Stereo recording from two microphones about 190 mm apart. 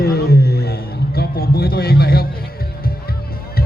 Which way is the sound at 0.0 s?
55° left (ahead or behind).